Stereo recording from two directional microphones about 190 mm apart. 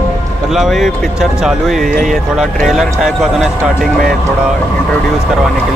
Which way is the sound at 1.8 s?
45° right (ahead or behind).